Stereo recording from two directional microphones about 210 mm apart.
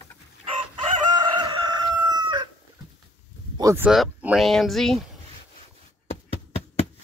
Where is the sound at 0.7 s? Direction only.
20° right (ahead or behind).